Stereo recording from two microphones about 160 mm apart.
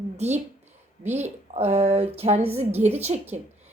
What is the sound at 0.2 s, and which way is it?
Speech, 45° right (ahead or behind).